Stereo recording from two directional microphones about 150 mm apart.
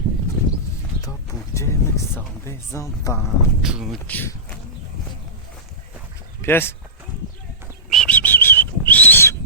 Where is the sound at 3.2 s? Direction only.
Centre (ahead or behind).